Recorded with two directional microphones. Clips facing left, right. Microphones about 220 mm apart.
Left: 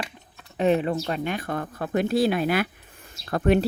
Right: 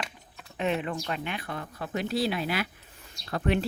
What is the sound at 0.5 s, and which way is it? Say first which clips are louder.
Speech: left 7 dB; 40° left (ahead or behind).